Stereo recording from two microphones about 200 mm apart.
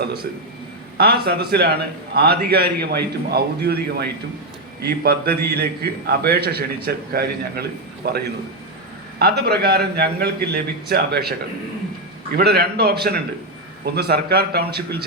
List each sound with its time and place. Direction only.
0.9 s a man's voice: 50° right (ahead or behind)
12.4 s a man's voice: 55° right (ahead or behind)